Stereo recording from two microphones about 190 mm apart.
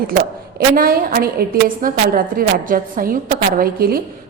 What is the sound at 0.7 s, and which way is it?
A woman's voice, 50° right (ahead or behind).